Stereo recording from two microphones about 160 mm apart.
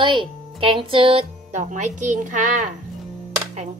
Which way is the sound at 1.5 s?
50° right (ahead or behind).